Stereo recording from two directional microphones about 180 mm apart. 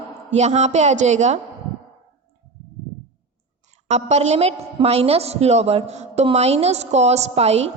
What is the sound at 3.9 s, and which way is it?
A woman's voice, 35° right (ahead or behind).